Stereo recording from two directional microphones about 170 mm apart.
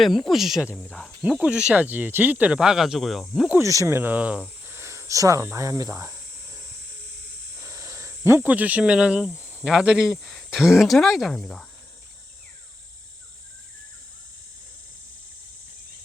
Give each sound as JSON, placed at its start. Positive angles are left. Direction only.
{"t": 0.0, "sound": "speech", "side_deg": 0}
{"t": 3.6, "sound": "speech", "side_deg": -20}
{"t": 7.1, "sound": "hiss", "side_deg": -75}
{"t": 7.6, "sound": "speech", "side_deg": -20}